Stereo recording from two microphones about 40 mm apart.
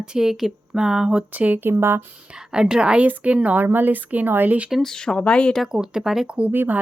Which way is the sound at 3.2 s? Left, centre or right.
Right.